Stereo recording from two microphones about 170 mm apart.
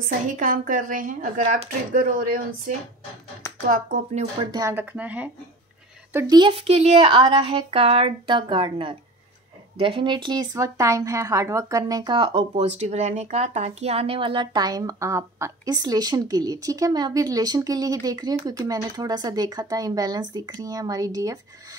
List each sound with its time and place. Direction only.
0.0 s a woman's voice: 50° right (ahead or behind)
3.6 s a woman's voice: 55° right (ahead or behind)
4.4 s speech: 20° right (ahead or behind)
6.1 s speech: 25° right (ahead or behind)